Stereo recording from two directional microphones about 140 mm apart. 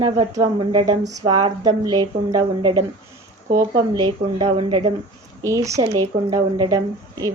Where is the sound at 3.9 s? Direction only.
35° right (ahead or behind).